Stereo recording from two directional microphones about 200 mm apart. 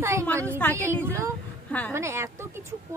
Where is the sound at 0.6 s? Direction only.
5° left (ahead or behind).